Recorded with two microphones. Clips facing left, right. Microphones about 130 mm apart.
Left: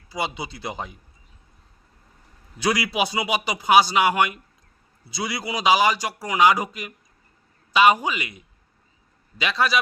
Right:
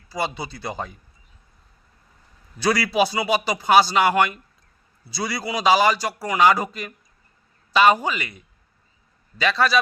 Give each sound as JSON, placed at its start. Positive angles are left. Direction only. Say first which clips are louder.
{"t": 0.1, "sound": "speech", "louder": "right 1 dB", "side_deg": 20}
{"t": 2.6, "sound": "a man's voice", "louder": "right 3 dB", "side_deg": 20}
{"t": 9.4, "sound": "a man's voice", "louder": "right 3 dB", "side_deg": 15}